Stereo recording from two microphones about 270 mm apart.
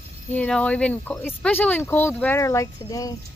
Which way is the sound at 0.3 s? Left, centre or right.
Centre.